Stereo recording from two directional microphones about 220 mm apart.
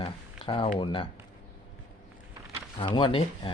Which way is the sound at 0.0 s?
25° left (ahead or behind).